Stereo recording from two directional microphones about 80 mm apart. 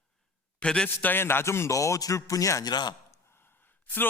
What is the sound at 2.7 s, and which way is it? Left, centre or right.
Speech, left.